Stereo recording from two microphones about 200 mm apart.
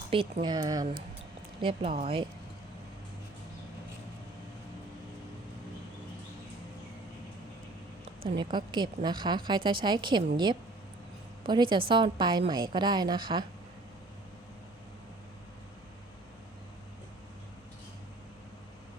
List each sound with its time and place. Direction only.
0.1 s a woman's voice: 25° right (ahead or behind)
8.4 s a woman's voice: 25° right (ahead or behind)